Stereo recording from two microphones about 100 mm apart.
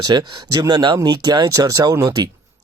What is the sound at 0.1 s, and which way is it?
Speech, 40° right (ahead or behind).